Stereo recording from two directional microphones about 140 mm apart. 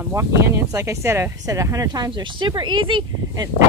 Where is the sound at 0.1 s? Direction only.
20° right (ahead or behind).